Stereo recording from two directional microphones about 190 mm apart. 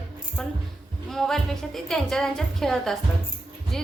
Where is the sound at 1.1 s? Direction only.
Centre (ahead or behind).